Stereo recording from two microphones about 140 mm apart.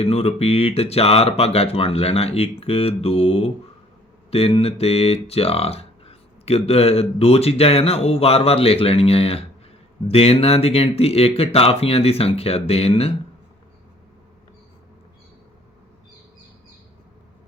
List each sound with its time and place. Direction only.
0.0 s speech: 45° left (ahead or behind)